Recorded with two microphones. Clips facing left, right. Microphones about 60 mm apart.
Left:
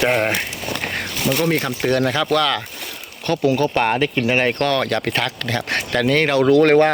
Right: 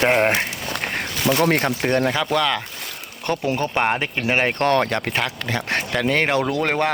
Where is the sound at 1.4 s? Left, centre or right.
Right.